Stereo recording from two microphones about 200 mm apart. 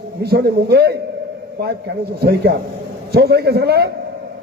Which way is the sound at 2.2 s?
55° right (ahead or behind).